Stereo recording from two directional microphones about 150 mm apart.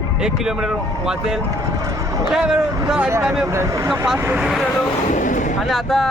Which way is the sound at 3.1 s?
20° right (ahead or behind).